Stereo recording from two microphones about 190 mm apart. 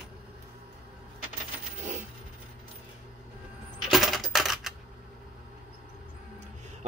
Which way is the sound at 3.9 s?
Centre (ahead or behind).